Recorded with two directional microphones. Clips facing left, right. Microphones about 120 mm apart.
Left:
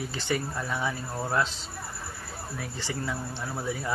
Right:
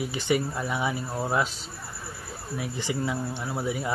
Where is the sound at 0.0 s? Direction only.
15° right (ahead or behind).